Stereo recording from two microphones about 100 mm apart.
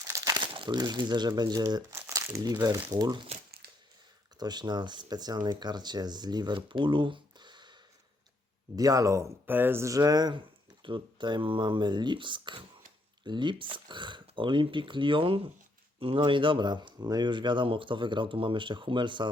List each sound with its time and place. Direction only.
0.0 s crumpling: 35° right (ahead or behind)
0.3 s speech: 55° right (ahead or behind)
1.9 s crumpling: 25° right (ahead or behind)
2.3 s speech: 40° right (ahead or behind)
4.4 s speech: 45° right (ahead or behind)
8.7 s speech: 35° right (ahead or behind)
9.5 s speech: 20° right (ahead or behind); by 19.3 s 50° right (ahead or behind)